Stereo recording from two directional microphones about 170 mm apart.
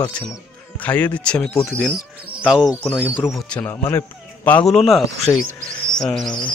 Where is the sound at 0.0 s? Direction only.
20° left (ahead or behind).